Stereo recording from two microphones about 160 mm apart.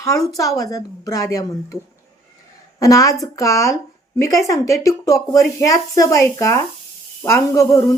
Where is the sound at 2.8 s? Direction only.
20° left (ahead or behind).